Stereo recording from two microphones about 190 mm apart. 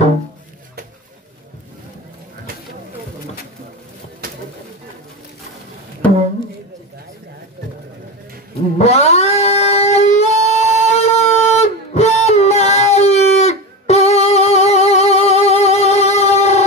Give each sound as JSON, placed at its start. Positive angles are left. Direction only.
{"t": 8.7, "sound": "cat", "side_deg": 35}